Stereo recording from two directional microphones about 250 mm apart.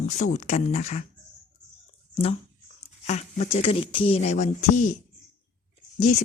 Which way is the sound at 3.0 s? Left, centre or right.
Left.